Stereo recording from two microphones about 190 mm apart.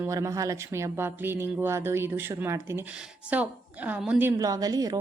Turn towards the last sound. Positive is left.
turn(degrees=-20)  # may be behind; listen again after turning